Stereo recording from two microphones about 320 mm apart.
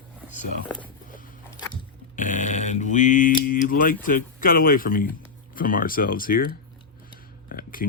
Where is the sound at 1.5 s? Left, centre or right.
Centre.